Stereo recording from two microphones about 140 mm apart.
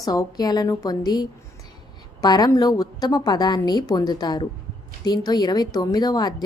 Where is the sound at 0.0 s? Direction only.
25° left (ahead or behind).